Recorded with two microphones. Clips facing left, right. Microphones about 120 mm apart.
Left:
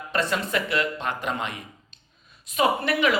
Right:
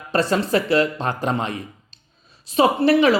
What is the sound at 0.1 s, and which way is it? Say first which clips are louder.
Speech: right 7 dB; 35° right (ahead or behind).